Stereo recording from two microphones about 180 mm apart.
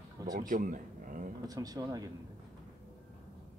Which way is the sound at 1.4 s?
20° right (ahead or behind).